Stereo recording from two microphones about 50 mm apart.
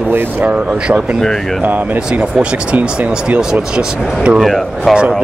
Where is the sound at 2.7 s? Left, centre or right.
Right.